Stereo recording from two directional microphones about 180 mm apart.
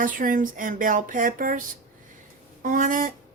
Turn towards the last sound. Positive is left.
turn(degrees=-50)  # may be behind; listen again after turning